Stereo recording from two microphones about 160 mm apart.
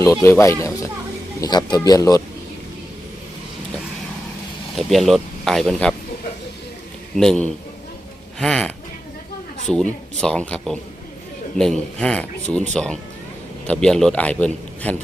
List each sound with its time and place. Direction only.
0.0 s speech: 15° left (ahead or behind)
4.8 s speech: centre (ahead or behind)
7.2 s a man's voice: 5° left (ahead or behind)